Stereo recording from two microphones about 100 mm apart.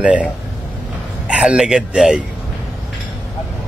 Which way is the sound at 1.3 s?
10° right (ahead or behind).